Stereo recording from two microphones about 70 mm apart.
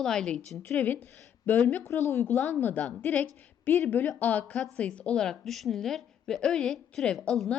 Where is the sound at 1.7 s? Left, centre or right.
Left.